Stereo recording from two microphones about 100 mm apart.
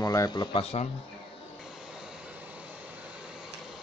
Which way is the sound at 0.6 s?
90° left.